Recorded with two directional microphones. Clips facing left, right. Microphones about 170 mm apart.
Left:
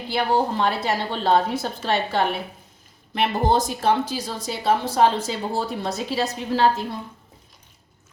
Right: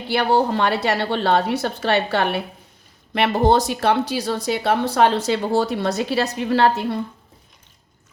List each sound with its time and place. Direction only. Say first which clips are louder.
0.1 s a woman's voice: right 3 dB; 70° right (ahead or behind)